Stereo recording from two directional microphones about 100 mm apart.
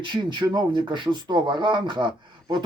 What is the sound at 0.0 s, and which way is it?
Speech, 50° right (ahead or behind).